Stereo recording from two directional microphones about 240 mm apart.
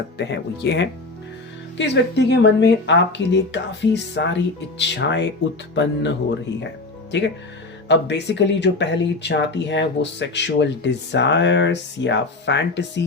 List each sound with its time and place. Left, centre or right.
0.2 s speech: left